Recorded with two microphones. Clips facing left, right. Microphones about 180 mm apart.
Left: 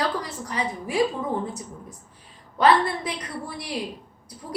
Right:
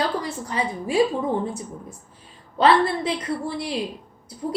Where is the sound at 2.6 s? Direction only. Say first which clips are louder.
Right 2 dB; 25° right (ahead or behind).